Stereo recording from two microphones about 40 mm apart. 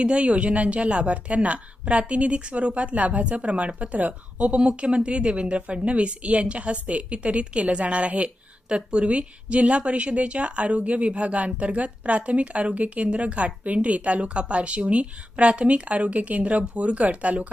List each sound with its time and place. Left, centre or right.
0.0 s a woman's voice: right
4.5 s a woman's voice: right